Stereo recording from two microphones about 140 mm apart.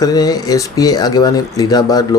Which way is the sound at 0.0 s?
25° left (ahead or behind).